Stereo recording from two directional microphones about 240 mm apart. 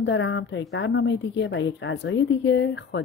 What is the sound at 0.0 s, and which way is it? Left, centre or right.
A woman's voice, left.